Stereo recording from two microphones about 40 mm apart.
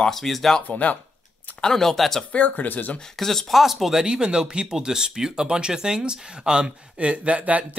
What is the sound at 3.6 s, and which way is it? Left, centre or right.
Speech, centre.